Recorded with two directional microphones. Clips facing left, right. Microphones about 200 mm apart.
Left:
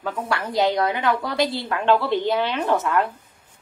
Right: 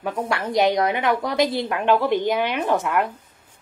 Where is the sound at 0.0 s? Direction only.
20° right (ahead or behind).